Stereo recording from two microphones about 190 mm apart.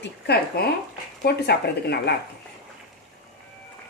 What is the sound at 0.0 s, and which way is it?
A woman's voice, 60° left (ahead or behind).